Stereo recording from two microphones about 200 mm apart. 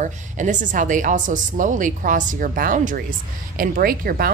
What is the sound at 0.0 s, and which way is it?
A woman's voice, 40° right (ahead or behind).